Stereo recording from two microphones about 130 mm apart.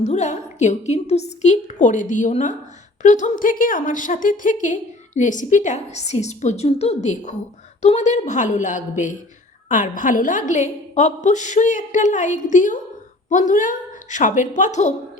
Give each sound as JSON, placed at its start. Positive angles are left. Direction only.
{"t": 0.0, "sound": "a woman's voice", "side_deg": 60}